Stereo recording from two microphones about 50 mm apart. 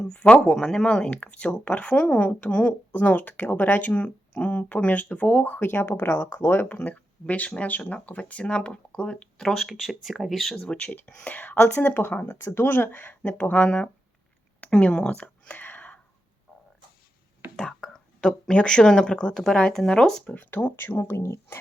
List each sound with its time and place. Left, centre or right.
0.1 s speech: left
0.5 s speech: centre
2.9 s speech: left
6.7 s speech: left
9.4 s speech: centre
10.9 s speech: left
12.3 s speech: left
12.6 s speech: left
14.6 s speech: left
15.6 s whispering: left
17.6 s speech: centre
20.3 s speech: left
21.0 s speech: left